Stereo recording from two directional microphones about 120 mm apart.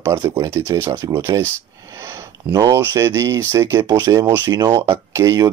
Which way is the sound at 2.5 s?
30° right (ahead or behind).